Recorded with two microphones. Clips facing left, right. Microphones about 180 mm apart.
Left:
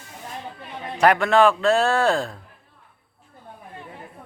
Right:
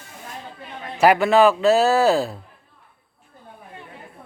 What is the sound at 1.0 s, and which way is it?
Speech, 5° right (ahead or behind).